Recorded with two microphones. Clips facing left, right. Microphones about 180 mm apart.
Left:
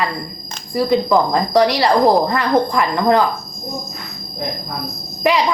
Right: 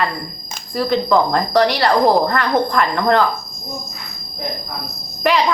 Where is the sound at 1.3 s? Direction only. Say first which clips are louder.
Left 1 dB; 15° left (ahead or behind).